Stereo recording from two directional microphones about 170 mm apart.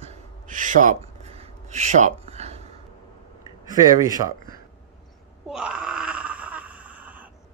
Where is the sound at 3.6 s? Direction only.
20° right (ahead or behind).